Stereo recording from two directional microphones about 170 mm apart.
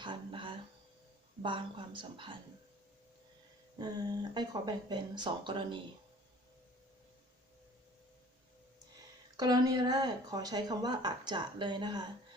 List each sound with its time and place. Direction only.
0.0 s a sound: 30° right (ahead or behind)
1.4 s speech: 30° right (ahead or behind)
3.8 s speech: 25° right (ahead or behind)
9.4 s speech: 25° right (ahead or behind)